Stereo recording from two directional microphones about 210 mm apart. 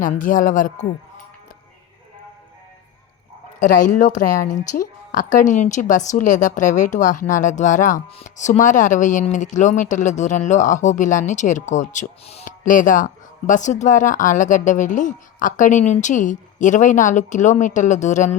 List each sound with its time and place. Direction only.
0.0 s a woman's voice: 40° left (ahead or behind)
3.6 s a woman's voice: 35° left (ahead or behind)